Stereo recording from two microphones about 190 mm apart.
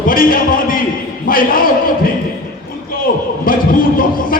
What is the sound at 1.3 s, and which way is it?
Speech, 50° left (ahead or behind).